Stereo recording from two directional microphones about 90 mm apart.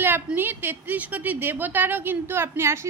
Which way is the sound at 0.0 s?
20° right (ahead or behind).